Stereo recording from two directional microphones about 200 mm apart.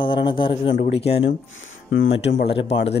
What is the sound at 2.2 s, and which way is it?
Speech, 30° left (ahead or behind).